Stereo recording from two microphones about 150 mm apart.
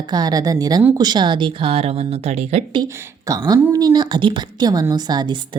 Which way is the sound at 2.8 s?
25° right (ahead or behind).